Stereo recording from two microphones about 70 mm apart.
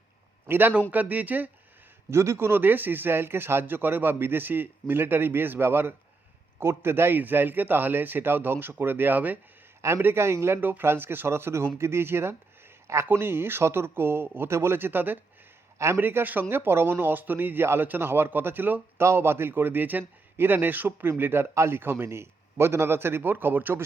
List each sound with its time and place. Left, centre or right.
0.4 s a man's voice: right
2.0 s a man's voice: right